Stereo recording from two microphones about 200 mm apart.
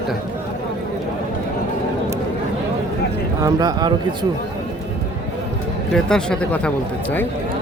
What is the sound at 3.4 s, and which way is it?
Speech, 20° right (ahead or behind).